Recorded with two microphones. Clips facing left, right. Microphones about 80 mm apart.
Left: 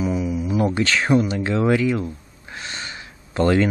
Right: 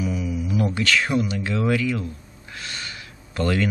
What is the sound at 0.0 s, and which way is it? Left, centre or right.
Speech, left.